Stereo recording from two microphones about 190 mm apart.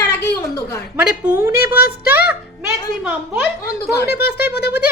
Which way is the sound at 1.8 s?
55° left (ahead or behind).